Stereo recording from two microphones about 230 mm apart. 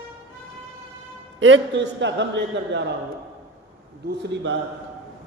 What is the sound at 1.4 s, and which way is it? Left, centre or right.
A man's voice, right.